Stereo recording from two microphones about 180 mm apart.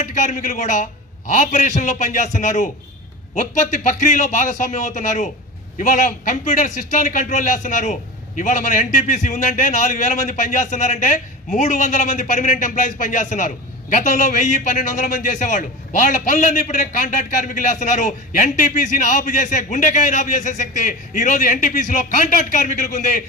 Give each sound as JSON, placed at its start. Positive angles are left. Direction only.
{"t": 0.0, "sound": "a man's voice", "side_deg": 45}